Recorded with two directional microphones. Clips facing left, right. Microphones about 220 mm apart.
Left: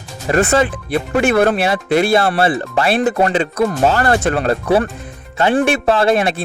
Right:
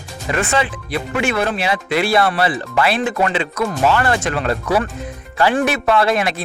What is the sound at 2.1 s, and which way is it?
Speech, 30° left (ahead or behind).